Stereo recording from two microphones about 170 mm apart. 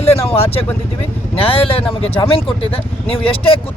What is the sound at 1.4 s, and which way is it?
Speech, 35° left (ahead or behind).